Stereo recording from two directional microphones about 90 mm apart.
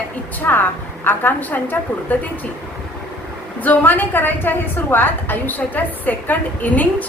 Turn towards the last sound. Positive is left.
turn(degrees=20)  # may be behind; listen again after turning